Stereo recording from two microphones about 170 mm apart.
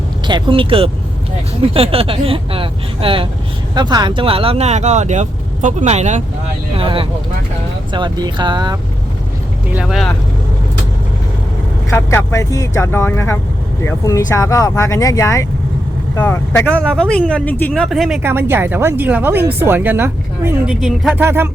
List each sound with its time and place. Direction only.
0.3 s speech: 25° right (ahead or behind); by 6.2 s 45° right (ahead or behind)
6.7 s speech: 30° right (ahead or behind)
9.7 s speech: centre (ahead or behind)
11.9 s speech: 15° left (ahead or behind); by 18.2 s centre (ahead or behind)
18.2 s speech: 15° right (ahead or behind)
20.8 s speech: 5° right (ahead or behind)